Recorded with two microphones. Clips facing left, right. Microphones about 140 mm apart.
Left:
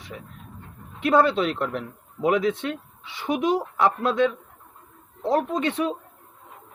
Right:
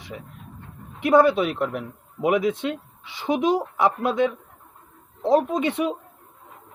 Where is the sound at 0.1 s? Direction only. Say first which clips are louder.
Right 2 dB; 15° right (ahead or behind).